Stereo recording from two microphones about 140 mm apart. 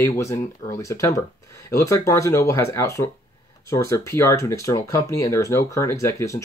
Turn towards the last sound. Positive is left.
turn(degrees=20)  # may be behind; listen again after turning